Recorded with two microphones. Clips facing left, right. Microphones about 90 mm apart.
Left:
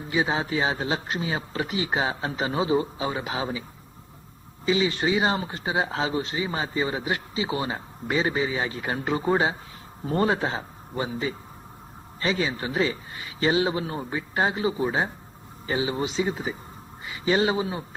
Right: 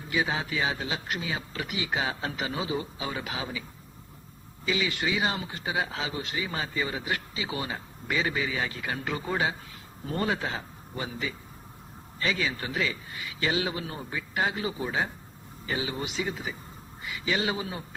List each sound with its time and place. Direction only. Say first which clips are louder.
0.1 s a man's voice: left 4 dB; 30° left (ahead or behind)
4.6 s a man's voice: left 6 dB; 30° left (ahead or behind)